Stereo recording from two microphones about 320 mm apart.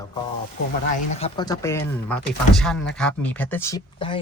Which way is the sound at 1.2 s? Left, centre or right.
Centre.